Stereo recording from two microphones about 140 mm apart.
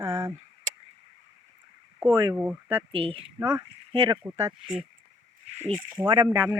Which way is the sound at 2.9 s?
40° right (ahead or behind).